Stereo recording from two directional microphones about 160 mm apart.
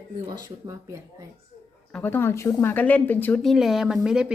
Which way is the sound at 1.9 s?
10° left (ahead or behind).